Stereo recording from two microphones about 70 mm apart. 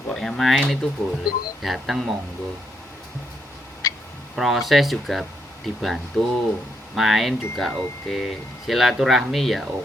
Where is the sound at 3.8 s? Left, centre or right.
Left.